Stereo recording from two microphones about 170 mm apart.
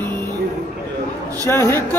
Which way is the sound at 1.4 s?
15° left (ahead or behind).